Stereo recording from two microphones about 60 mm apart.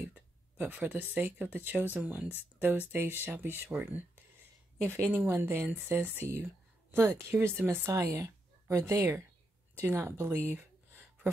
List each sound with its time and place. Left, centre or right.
0.0 s speech: right
7.8 s speech: right
9.8 s speech: right